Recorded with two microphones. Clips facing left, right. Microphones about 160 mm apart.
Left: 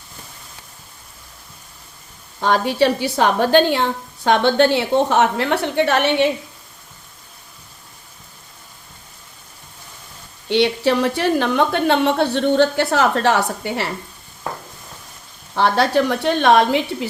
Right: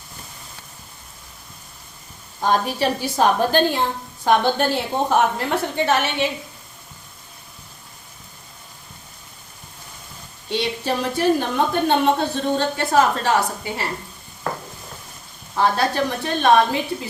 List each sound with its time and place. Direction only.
2.4 s a woman's voice: 75° left (ahead or behind)
10.5 s a woman's voice: 75° left (ahead or behind)
15.5 s a woman's voice: 75° left (ahead or behind)